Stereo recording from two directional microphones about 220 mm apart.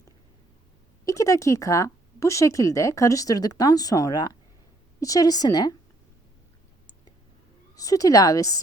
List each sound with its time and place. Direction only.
1.0 s speech: 15° left (ahead or behind)
7.8 s speech: 15° left (ahead or behind)